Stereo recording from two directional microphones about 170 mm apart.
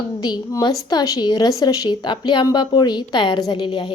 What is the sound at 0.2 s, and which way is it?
Speech, 25° left (ahead or behind).